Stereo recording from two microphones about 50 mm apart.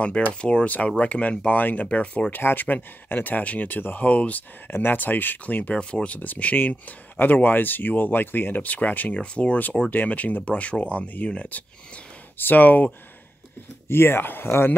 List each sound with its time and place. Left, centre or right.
0.4 s speech: left
1.5 s speech: left
1.9 s speech: left
2.3 s speech: left
4.6 s speech: left
4.9 s speech: left
12.4 s speech: left
13.8 s speech: left